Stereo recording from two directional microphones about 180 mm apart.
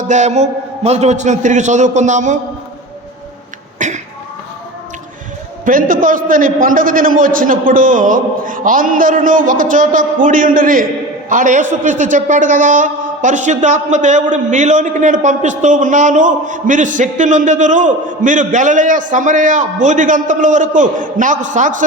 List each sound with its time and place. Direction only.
0.0 s a man's voice: 40° right (ahead or behind)
3.8 s a sound: 40° right (ahead or behind)
5.6 s a man's voice: 50° right (ahead or behind)